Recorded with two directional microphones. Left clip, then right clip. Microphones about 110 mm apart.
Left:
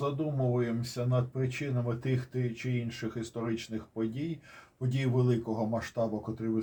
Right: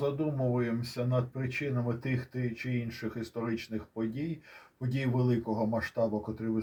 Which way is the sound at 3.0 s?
25° right (ahead or behind).